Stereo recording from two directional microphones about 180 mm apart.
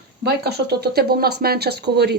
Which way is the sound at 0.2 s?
65° right (ahead or behind).